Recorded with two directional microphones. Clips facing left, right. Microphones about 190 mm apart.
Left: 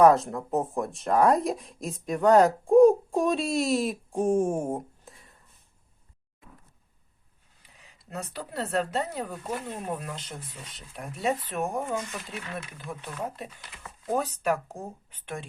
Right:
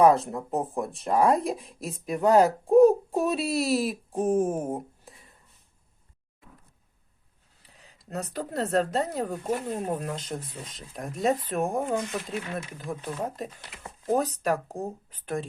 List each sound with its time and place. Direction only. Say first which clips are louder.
0.0 s a woman's voice: left 1 dB; centre (ahead or behind)
7.6 s speech: right 2 dB; 35° right (ahead or behind)
9.3 s speech: right 5 dB; 25° right (ahead or behind)
9.6 s speech: right 4 dB; 35° right (ahead or behind)
12.8 s speech: right 3 dB; 30° right (ahead or behind)